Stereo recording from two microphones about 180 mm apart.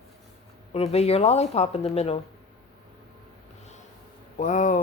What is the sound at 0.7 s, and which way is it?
Speech, 35° left (ahead or behind).